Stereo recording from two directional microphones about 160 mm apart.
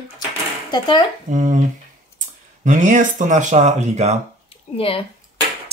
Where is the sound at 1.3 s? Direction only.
50° right (ahead or behind).